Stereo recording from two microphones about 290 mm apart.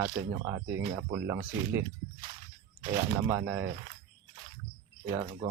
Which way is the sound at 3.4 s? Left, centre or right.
Right.